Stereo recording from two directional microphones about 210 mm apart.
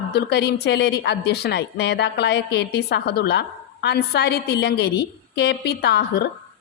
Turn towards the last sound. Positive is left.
turn(degrees=50)  # may be behind; listen again after turning